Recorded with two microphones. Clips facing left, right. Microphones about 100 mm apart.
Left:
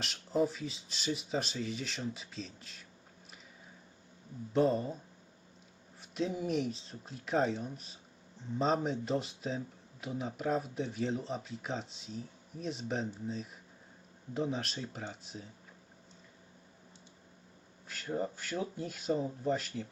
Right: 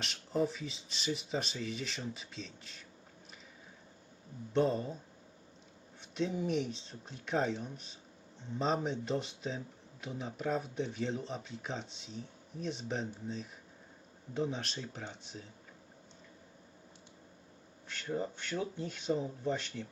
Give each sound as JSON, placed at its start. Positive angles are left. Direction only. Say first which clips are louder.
{"t": 0.0, "sound": "speech", "louder": "left 2 dB", "side_deg": 0}
{"t": 4.5, "sound": "speech", "louder": "left 2 dB", "side_deg": 5}
{"t": 6.0, "sound": "speech", "louder": "even", "side_deg": 5}
{"t": 17.8, "sound": "speech", "louder": "left 1 dB", "side_deg": 5}